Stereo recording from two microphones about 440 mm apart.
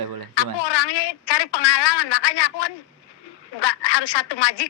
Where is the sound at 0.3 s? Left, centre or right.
Left.